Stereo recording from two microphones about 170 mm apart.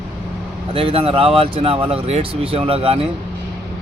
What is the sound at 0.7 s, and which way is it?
Speech, 35° right (ahead or behind).